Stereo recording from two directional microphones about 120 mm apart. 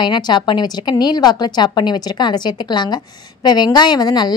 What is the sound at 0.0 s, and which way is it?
A woman's voice, 40° left (ahead or behind).